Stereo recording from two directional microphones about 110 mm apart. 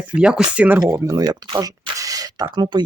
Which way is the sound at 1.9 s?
30° right (ahead or behind).